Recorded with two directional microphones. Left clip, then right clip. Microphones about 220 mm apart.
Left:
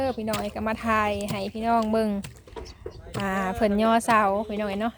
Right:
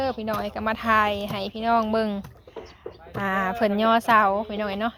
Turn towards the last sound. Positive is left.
turn(degrees=15)  # may be behind; listen again after turning